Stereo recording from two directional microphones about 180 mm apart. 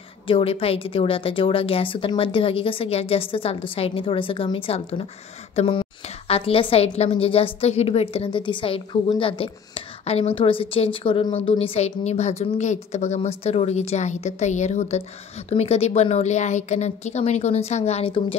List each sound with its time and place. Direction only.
0.3 s a woman's voice: 30° left (ahead or behind)